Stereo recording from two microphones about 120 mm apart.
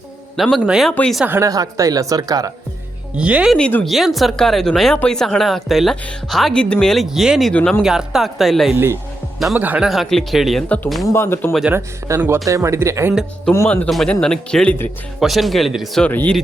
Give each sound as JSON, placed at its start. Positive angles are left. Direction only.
{"t": 0.3, "sound": "speech", "side_deg": 0}
{"t": 1.2, "sound": "speech", "side_deg": -15}
{"t": 1.5, "sound": "speech", "side_deg": -30}
{"t": 3.2, "sound": "speech", "side_deg": -10}
{"t": 3.6, "sound": "a man's voice", "side_deg": 15}
{"t": 3.8, "sound": "speech", "side_deg": 0}
{"t": 8.7, "sound": "speech", "side_deg": -20}
{"t": 11.0, "sound": "speech", "side_deg": 20}
{"t": 11.7, "sound": "speech", "side_deg": -25}
{"t": 13.5, "sound": "speech", "side_deg": 20}
{"t": 13.8, "sound": "a man's voice", "side_deg": 5}
{"t": 15.2, "sound": "speech", "side_deg": 0}
{"t": 16.0, "sound": "a man's voice", "side_deg": 10}